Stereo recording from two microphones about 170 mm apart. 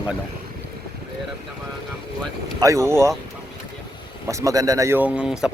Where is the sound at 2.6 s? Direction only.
20° right (ahead or behind).